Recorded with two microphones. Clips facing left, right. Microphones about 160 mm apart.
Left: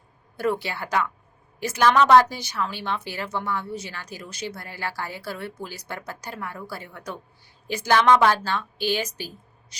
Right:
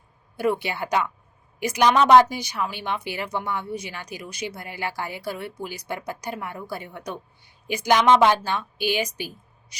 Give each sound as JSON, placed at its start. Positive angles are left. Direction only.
{"t": 0.3, "sound": "speech", "side_deg": -15}